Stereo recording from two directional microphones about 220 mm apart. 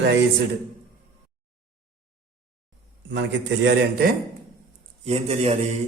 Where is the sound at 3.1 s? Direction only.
55° right (ahead or behind).